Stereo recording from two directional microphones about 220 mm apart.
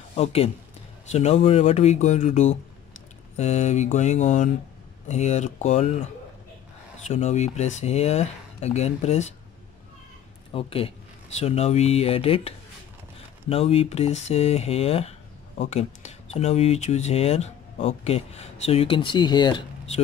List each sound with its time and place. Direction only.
0.1 s speech: 30° left (ahead or behind)
10.5 s speech: 25° left (ahead or behind)